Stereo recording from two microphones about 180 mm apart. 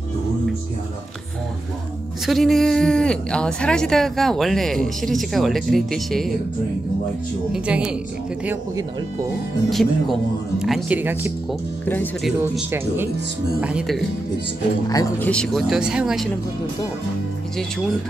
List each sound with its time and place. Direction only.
2.2 s speech: centre (ahead or behind)
7.5 s speech: 5° right (ahead or behind)
9.7 s speech: centre (ahead or behind)
11.8 s speech: 10° left (ahead or behind)
12.7 s speech: 15° right (ahead or behind)
14.9 s speech: 20° left (ahead or behind)
15.2 s speech: 5° left (ahead or behind)